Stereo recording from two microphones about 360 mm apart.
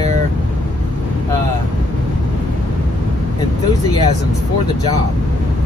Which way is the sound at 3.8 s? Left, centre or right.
Centre.